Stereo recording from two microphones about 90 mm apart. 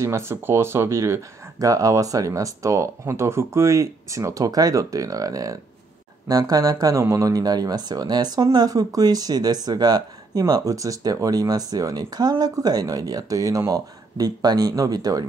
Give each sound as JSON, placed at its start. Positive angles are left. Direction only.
{"t": 0.0, "sound": "speech", "side_deg": -30}